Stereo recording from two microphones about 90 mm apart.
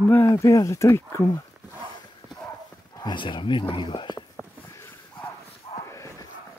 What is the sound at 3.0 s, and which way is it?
Speech, 60° left (ahead or behind).